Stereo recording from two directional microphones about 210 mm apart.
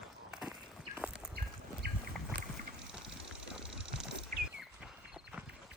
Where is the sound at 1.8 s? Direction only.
50° right (ahead or behind).